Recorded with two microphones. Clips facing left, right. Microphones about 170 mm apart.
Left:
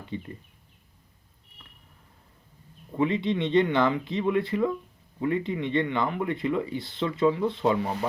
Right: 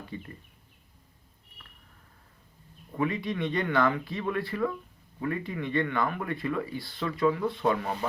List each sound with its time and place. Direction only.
0.1 s speech: 20° left (ahead or behind)
3.0 s speech: 25° left (ahead or behind)